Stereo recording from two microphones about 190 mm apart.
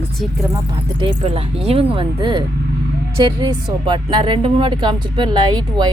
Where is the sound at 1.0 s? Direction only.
30° right (ahead or behind).